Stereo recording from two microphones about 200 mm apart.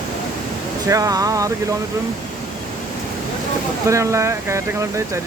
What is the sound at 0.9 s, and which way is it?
Speech, 15° right (ahead or behind).